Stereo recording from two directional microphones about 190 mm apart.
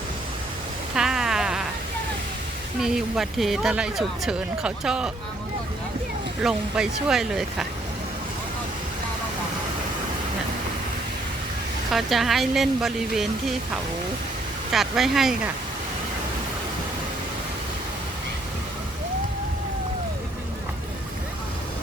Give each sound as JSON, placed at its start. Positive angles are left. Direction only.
{"t": 0.9, "sound": "a sound", "side_deg": -5}
{"t": 2.8, "sound": "speech", "side_deg": 0}
{"t": 6.4, "sound": "speech", "side_deg": -5}
{"t": 11.9, "sound": "speech", "side_deg": 0}
{"t": 14.7, "sound": "speech", "side_deg": 0}